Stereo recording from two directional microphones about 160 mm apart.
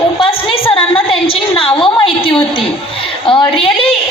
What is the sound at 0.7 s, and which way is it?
A woman's voice, 35° left (ahead or behind).